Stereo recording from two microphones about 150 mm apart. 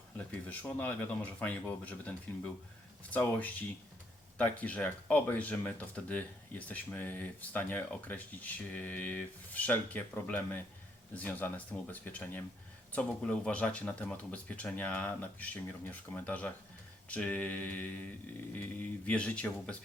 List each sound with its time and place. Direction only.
0.2 s speech: 10° left (ahead or behind)
19.0 s speech: 10° left (ahead or behind)